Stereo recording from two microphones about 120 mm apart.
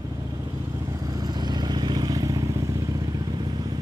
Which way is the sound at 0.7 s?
30° right (ahead or behind).